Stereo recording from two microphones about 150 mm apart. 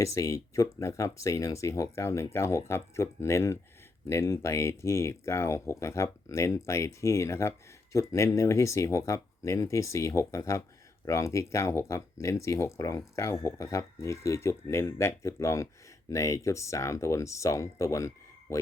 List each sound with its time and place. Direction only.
0.0 s speech: 20° left (ahead or behind)